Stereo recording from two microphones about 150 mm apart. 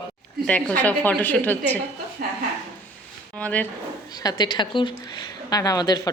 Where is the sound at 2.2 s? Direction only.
75° right (ahead or behind).